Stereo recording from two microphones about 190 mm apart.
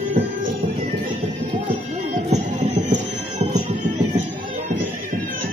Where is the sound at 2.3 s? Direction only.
40° right (ahead or behind).